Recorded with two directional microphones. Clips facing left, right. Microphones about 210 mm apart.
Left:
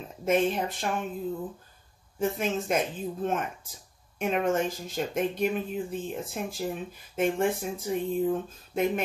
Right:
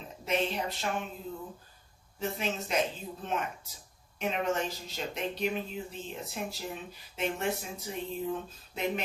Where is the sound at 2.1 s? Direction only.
50° left (ahead or behind).